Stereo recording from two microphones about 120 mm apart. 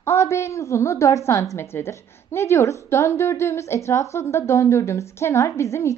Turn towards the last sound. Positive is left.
turn(degrees=25)  # may be behind; listen again after turning